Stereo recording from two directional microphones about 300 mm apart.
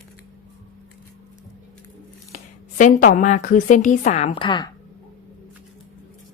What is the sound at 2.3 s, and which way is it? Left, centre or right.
A woman's voice, left.